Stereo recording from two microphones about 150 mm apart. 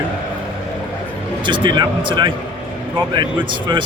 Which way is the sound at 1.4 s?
30° right (ahead or behind).